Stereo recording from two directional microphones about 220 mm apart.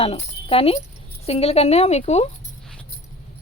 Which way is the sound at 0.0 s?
25° left (ahead or behind).